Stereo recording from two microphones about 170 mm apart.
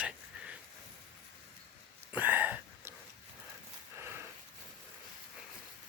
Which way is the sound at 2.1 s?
10° right (ahead or behind).